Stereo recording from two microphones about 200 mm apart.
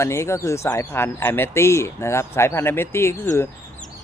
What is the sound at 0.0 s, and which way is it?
Speech, 15° left (ahead or behind).